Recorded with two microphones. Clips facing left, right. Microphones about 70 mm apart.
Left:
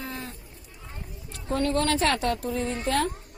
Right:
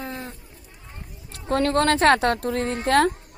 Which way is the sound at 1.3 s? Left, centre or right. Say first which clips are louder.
Right 5 dB; right.